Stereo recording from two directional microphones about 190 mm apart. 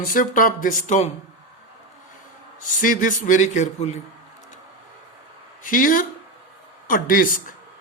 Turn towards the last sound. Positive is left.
turn(degrees=45)  # may be behind; listen again after turning